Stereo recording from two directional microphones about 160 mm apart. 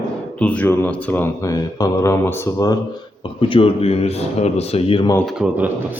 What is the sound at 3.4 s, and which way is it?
Speech, 35° left (ahead or behind).